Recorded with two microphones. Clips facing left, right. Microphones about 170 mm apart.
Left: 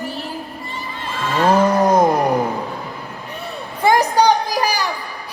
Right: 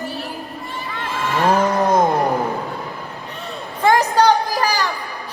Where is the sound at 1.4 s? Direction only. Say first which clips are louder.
Left 3 dB; 15° left (ahead or behind).